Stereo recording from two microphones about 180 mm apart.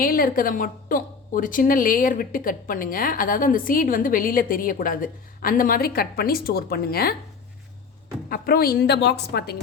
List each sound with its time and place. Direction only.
0.0 s a woman's voice: 55° left (ahead or behind)
8.3 s a woman's voice: 55° left (ahead or behind)